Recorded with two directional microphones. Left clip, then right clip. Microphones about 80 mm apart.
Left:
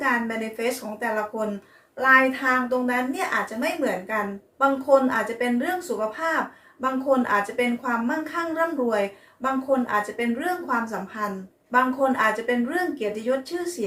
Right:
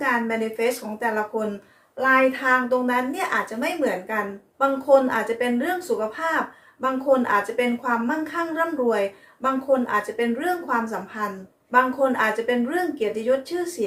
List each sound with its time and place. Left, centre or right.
0.0 s a woman's voice: right
2.0 s a woman's voice: right